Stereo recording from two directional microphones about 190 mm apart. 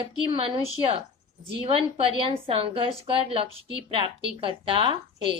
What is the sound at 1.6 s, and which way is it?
Speech, 30° right (ahead or behind).